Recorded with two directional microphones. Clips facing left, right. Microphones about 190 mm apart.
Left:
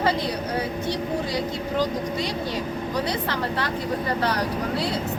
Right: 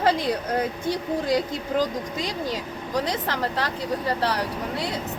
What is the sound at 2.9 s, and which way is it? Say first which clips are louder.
Speech: right 2 dB; 40° right (ahead or behind).